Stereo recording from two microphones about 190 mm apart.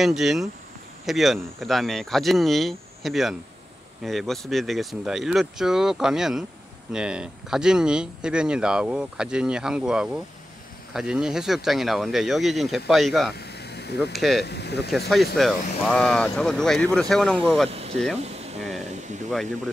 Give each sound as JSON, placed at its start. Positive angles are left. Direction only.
{"t": 0.0, "sound": "speech", "side_deg": 0}
{"t": 13.4, "sound": "vehicle", "side_deg": 60}
{"t": 14.1, "sound": "speech", "side_deg": 0}
{"t": 14.4, "sound": "speech", "side_deg": 60}
{"t": 14.9, "sound": "speech", "side_deg": 0}
{"t": 17.6, "sound": "speech", "side_deg": -30}
{"t": 18.1, "sound": "a sound", "side_deg": -35}